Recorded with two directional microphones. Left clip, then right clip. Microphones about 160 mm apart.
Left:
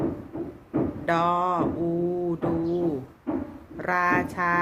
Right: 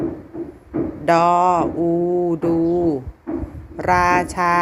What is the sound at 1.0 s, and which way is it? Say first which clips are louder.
Speech: right 10 dB; 45° right (ahead or behind).